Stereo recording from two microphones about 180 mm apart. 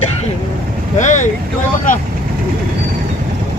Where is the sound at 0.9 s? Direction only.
45° left (ahead or behind).